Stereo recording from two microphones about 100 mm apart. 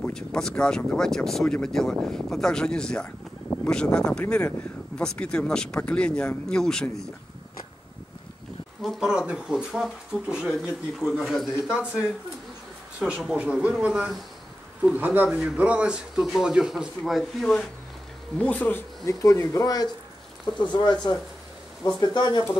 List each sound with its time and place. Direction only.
0.1 s speech: 5° left (ahead or behind)
4.2 s speech: 20° left (ahead or behind)
8.8 s speech: 5° right (ahead or behind)
15.2 s speech: 5° right (ahead or behind)
18.4 s speech: 15° left (ahead or behind)
19.0 s speech: 30° left (ahead or behind); by 22.4 s 45° left (ahead or behind)